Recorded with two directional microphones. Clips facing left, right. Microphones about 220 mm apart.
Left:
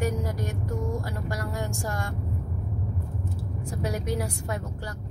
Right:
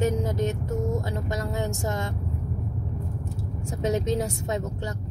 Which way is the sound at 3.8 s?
25° right (ahead or behind).